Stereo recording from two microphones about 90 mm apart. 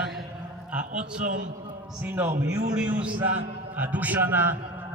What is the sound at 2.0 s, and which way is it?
A man's voice, 20° right (ahead or behind).